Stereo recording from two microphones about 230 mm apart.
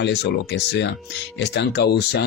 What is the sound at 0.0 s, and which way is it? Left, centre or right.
Speech, left.